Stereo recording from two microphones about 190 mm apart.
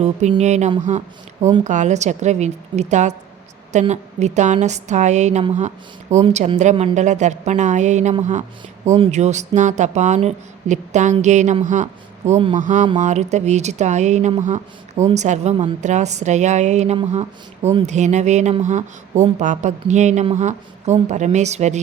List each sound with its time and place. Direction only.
0.0 s speech: 35° right (ahead or behind)